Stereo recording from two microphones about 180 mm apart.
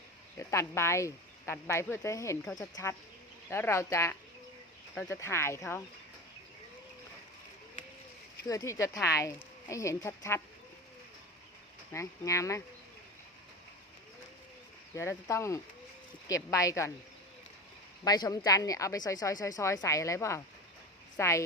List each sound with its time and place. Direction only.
0.3 s a woman's voice: 15° left (ahead or behind)
8.4 s speech: 20° left (ahead or behind)
11.9 s speech: 15° left (ahead or behind)
14.9 s speech: 15° left (ahead or behind)
18.0 s a woman's voice: 20° left (ahead or behind)